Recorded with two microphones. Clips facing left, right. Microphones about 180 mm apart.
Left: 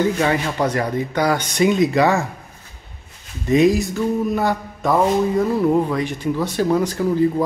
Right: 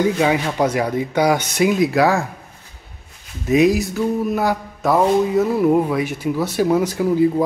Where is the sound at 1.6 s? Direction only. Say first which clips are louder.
Left 1 dB; 5° right (ahead or behind).